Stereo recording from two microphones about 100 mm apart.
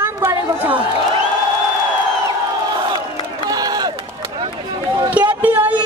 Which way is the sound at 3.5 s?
40° right (ahead or behind).